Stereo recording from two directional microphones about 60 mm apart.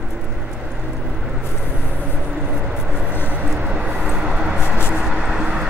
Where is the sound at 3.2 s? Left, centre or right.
Right.